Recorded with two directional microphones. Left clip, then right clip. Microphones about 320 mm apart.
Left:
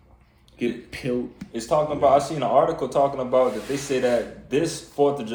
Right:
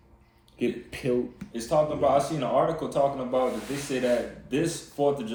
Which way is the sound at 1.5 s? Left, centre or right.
Centre.